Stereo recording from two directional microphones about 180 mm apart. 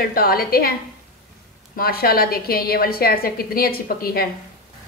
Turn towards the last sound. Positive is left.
turn(degrees=55)  # may be behind; listen again after turning